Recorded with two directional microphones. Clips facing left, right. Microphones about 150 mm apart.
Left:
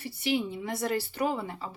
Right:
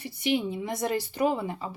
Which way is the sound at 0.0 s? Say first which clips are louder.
Right 2 dB; 15° right (ahead or behind).